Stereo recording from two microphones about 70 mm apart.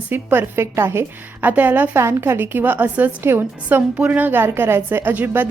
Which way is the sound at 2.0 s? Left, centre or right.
Right.